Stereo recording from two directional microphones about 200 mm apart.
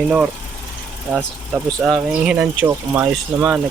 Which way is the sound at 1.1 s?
5° right (ahead or behind).